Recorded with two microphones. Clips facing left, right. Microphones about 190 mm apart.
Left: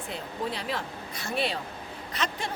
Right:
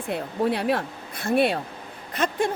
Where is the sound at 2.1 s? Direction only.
50° right (ahead or behind).